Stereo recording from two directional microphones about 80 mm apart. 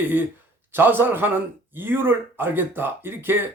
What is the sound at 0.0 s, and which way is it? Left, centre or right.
Speech, right.